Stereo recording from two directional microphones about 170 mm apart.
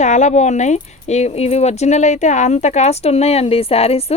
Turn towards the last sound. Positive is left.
turn(degrees=35)  # may be behind; listen again after turning